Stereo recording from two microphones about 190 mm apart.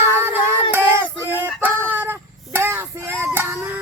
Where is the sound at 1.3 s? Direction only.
10° right (ahead or behind).